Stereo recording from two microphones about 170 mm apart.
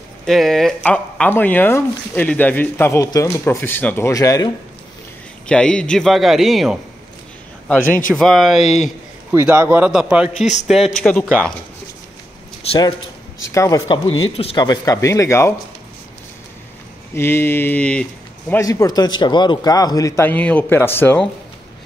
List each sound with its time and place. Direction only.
0.3 s speech: centre (ahead or behind); by 4.5 s 20° left (ahead or behind)
5.5 s speech: 5° left (ahead or behind)
8.1 s speech: centre (ahead or behind)
8.6 s speech: 45° left (ahead or behind)
9.3 s speech: 15° right (ahead or behind)
10.4 s speech: 45° left (ahead or behind)
10.7 s speech: centre (ahead or behind)
13.5 s a man's voice: 20° left (ahead or behind)
17.1 s a man's voice: 15° left (ahead or behind)